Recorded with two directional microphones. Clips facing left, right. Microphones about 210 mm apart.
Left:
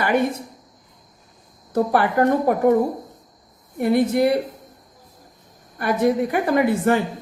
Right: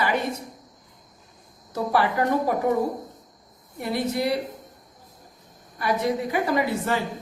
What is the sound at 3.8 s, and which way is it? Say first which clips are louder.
Speech: left 8 dB; 55° left (ahead or behind).